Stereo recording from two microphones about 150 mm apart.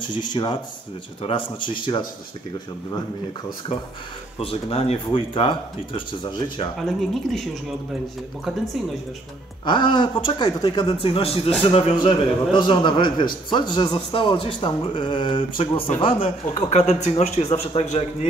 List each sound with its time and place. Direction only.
0.3 s speech: 30° left (ahead or behind)
4.4 s speech: 40° left (ahead or behind)
6.8 s speech: centre (ahead or behind)
9.7 s speech: 30° left (ahead or behind)
16.5 s a man's voice: 45° left (ahead or behind)